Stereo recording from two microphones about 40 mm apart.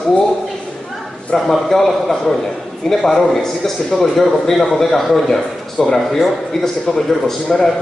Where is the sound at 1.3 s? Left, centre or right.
Centre.